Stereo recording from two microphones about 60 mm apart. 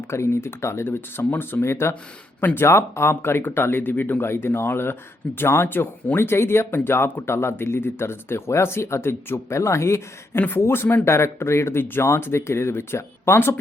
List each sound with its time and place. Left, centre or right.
0.1 s speech: left